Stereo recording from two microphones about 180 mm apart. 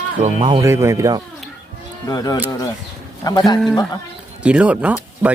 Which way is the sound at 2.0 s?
20° left (ahead or behind).